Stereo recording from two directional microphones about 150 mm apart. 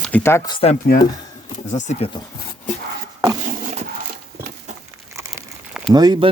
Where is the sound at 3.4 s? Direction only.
55° right (ahead or behind).